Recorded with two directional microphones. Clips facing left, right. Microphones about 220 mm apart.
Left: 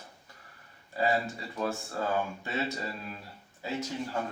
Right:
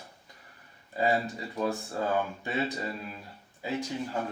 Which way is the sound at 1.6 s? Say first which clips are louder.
Right 2 dB; 20° right (ahead or behind).